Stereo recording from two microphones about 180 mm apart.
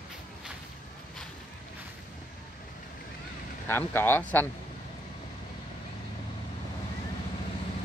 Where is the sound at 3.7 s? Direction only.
10° left (ahead or behind).